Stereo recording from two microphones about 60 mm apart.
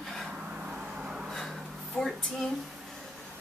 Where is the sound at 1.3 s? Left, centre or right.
Centre.